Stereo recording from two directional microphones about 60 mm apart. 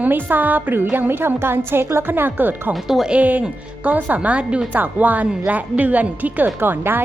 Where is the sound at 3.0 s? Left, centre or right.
Right.